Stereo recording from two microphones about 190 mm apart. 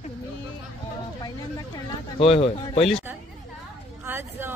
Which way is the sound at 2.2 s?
30° left (ahead or behind).